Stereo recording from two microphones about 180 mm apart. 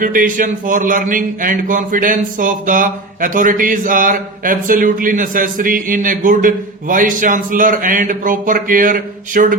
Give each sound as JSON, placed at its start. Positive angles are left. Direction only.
{"t": 0.0, "sound": "a man's voice", "side_deg": -50}